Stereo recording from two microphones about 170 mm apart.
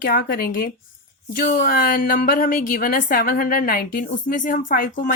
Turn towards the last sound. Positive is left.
turn(degrees=55)  # may be behind; listen again after turning